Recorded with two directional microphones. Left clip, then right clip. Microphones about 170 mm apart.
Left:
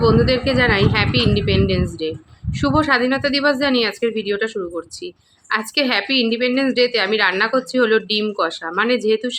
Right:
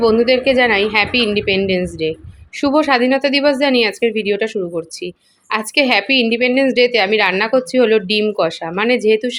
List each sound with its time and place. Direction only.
0.0 s speech: 15° right (ahead or behind)